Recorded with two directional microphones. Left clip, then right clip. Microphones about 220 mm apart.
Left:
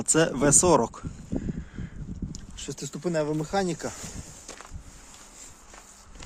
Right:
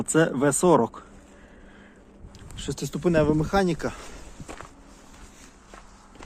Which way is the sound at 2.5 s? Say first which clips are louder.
Right 5 dB; centre (ahead or behind).